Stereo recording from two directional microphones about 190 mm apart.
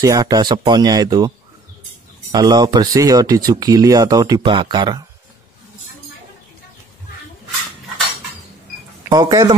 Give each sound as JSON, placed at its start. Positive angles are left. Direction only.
{"t": 0.0, "sound": "speech", "side_deg": -20}
{"t": 2.3, "sound": "speech", "side_deg": -20}
{"t": 9.1, "sound": "speech", "side_deg": -20}